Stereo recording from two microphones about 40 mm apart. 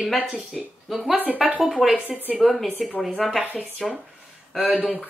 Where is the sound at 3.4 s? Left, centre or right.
Right.